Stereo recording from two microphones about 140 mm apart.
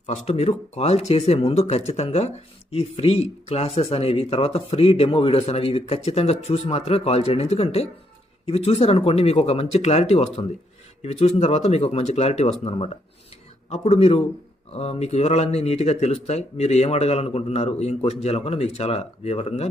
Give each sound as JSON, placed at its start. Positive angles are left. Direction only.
{"t": 0.0, "sound": "speech", "side_deg": 50}